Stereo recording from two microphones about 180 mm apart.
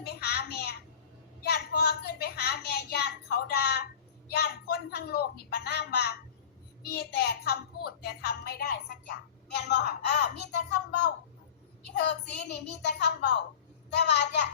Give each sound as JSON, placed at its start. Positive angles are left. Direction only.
{"t": 0.0, "sound": "a sound", "side_deg": 65}
{"t": 1.5, "sound": "a woman's voice", "side_deg": 60}
{"t": 12.5, "sound": "a child's voice", "side_deg": 70}